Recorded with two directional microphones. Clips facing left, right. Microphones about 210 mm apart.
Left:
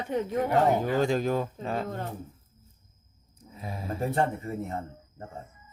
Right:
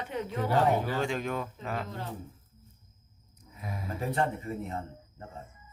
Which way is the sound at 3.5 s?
30° left (ahead or behind).